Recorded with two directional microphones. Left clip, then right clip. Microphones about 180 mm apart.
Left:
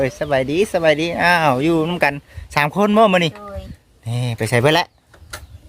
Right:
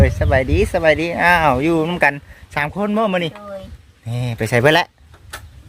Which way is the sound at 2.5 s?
40° left (ahead or behind).